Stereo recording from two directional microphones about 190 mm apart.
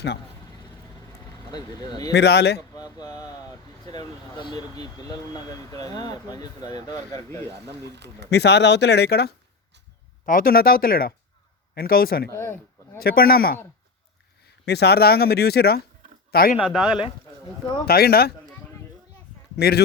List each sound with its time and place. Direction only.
1.5 s speech: 20° left (ahead or behind)
2.1 s speech: 60° left (ahead or behind)
2.6 s speech: 20° left (ahead or behind)
7.9 s speech: 65° right (ahead or behind)
8.3 s speech: 60° left (ahead or behind)
12.3 s speech: 15° left (ahead or behind)
13.0 s speech: 50° left (ahead or behind)
14.6 s speech: 60° left (ahead or behind)
16.6 s speech: 5° right (ahead or behind)
17.8 s speech: 55° left (ahead or behind)
19.5 s speech: 55° left (ahead or behind)